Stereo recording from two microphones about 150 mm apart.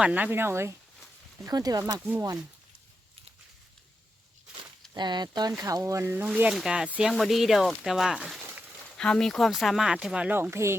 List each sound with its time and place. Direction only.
0.0 s speech: 10° right (ahead or behind); by 1.8 s 25° right (ahead or behind)
1.9 s speech: 15° right (ahead or behind)
4.9 s speech: 30° right (ahead or behind); by 8.7 s 10° right (ahead or behind)
9.0 s speech: 5° left (ahead or behind); by 10.8 s 15° right (ahead or behind)